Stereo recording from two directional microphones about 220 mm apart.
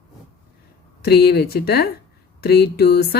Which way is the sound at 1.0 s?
45° left (ahead or behind).